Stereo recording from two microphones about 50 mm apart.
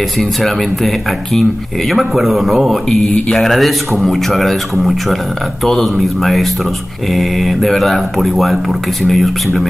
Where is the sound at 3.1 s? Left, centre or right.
Left.